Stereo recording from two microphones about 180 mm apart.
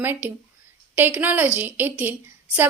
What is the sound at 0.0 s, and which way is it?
A woman's voice, 10° right (ahead or behind).